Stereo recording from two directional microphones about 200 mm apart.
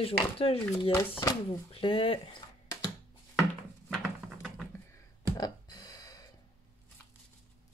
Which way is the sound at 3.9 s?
Centre (ahead or behind).